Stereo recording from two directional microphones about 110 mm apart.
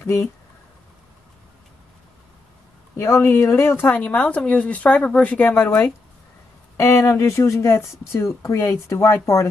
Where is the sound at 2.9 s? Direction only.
25° left (ahead or behind).